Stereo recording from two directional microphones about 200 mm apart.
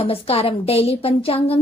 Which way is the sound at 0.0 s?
30° left (ahead or behind).